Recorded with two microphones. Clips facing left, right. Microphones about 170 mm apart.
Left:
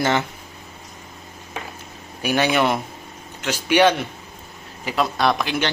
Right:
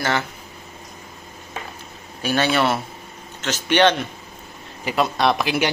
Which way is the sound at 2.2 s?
15° left (ahead or behind).